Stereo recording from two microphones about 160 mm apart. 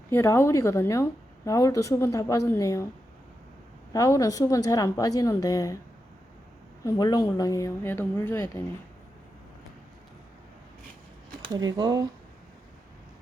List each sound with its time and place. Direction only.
0.1 s a woman's voice: 15° left (ahead or behind)
3.9 s a woman's voice: 20° left (ahead or behind)
6.8 s a woman's voice: 20° left (ahead or behind)
11.4 s speech: 25° right (ahead or behind)